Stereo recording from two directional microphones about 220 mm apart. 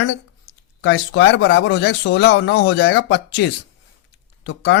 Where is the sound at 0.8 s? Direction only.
50° left (ahead or behind).